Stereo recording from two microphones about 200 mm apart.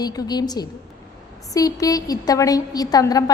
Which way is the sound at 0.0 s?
20° left (ahead or behind).